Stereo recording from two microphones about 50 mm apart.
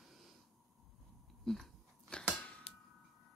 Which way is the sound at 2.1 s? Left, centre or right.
Centre.